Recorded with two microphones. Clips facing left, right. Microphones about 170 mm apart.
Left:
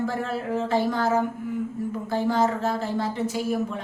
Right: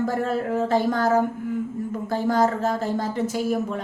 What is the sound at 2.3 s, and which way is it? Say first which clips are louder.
Speech: right 3 dB; 40° right (ahead or behind).